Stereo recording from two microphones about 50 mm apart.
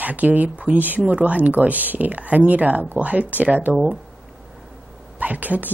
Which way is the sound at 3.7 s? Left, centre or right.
Centre.